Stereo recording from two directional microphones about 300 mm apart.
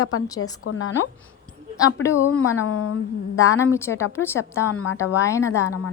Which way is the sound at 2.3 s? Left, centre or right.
Left.